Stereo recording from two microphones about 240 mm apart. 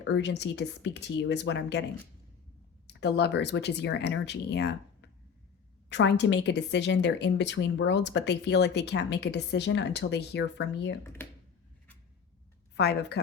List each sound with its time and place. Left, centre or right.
0.0 s speech: left
2.8 s speech: left
12.7 s a woman's voice: left